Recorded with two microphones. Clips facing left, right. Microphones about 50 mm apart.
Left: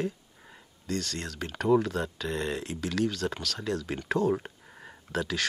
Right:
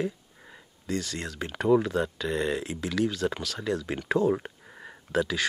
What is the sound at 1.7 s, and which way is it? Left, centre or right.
Speech, centre.